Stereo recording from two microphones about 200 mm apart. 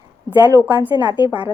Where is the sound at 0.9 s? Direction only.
25° left (ahead or behind).